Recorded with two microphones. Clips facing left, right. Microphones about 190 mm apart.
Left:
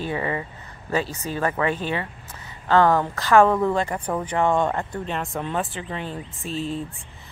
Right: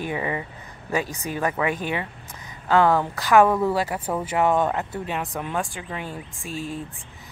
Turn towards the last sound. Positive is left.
turn(degrees=-10)  # may be behind; listen again after turning